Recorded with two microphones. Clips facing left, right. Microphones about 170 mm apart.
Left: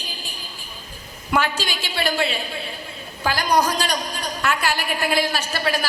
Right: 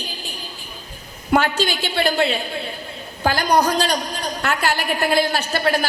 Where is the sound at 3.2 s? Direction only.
55° right (ahead or behind).